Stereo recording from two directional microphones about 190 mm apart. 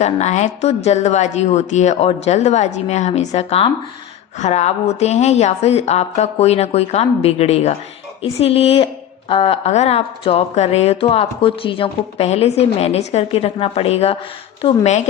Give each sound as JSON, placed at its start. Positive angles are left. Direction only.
{"t": 0.0, "sound": "speech", "side_deg": 35}